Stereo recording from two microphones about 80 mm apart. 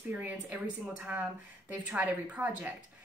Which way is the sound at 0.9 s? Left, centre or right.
Right.